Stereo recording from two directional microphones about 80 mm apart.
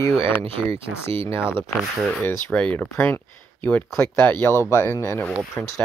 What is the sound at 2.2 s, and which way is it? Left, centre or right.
Speech, centre.